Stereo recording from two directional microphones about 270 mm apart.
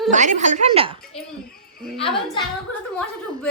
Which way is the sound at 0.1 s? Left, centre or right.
Right.